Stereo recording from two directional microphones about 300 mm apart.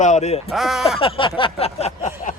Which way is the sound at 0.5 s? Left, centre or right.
Centre.